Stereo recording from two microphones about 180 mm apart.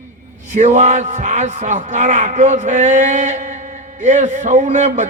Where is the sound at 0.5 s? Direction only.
40° right (ahead or behind).